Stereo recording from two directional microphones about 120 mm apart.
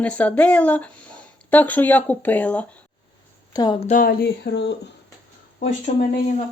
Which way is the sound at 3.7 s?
65° left (ahead or behind).